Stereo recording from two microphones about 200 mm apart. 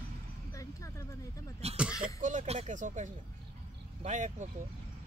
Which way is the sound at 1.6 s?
30° right (ahead or behind).